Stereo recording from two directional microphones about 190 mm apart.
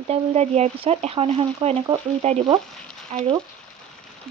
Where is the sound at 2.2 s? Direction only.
35° right (ahead or behind).